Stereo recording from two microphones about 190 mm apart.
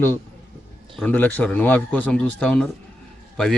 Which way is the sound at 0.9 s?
10° left (ahead or behind).